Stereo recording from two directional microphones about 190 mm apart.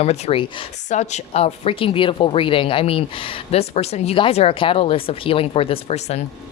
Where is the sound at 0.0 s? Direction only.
35° left (ahead or behind).